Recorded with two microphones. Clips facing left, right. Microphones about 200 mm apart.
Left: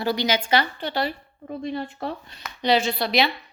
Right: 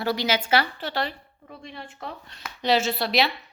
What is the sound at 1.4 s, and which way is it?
Speech, 35° left (ahead or behind).